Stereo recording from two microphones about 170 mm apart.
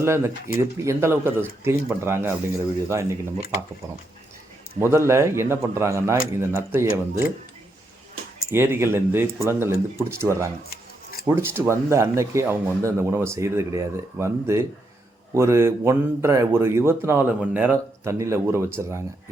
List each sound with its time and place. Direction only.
0.0 s a man's voice: 15° right (ahead or behind)
4.8 s a man's voice: 15° right (ahead or behind)
8.5 s a man's voice: 15° right (ahead or behind)